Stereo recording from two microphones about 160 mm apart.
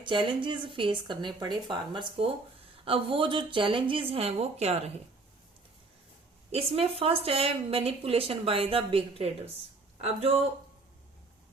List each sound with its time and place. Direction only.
0.0 s speech: 30° right (ahead or behind)
6.5 s speech: 40° right (ahead or behind)